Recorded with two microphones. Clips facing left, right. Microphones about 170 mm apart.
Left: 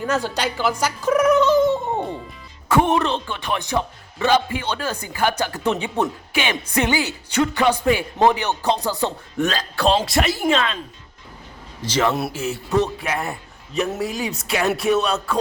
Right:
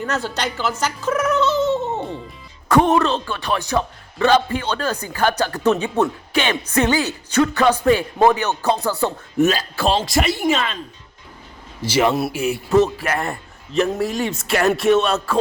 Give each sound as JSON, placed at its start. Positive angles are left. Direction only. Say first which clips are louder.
{"t": 0.0, "sound": "speech", "louder": "left 1 dB", "side_deg": 10}
{"t": 2.6, "sound": "music", "louder": "right 3 dB", "side_deg": 5}
{"t": 2.9, "sound": "speech", "louder": "right 3 dB", "side_deg": 20}
{"t": 9.0, "sound": "speech", "louder": "right 8 dB", "side_deg": -10}
{"t": 11.8, "sound": "a man's voice", "louder": "right 3 dB", "side_deg": -10}
{"t": 12.7, "sound": "speech", "louder": "right 4 dB", "side_deg": 0}